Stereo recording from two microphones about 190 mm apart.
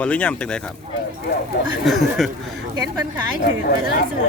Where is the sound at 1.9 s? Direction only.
Centre (ahead or behind).